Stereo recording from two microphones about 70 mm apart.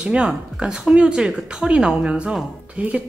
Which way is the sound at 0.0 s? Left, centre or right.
Centre.